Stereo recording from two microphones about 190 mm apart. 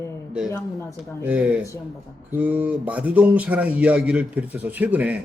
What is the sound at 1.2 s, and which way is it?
A man's voice, 5° right (ahead or behind).